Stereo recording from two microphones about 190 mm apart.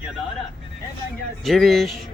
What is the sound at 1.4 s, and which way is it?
Speech, centre (ahead or behind).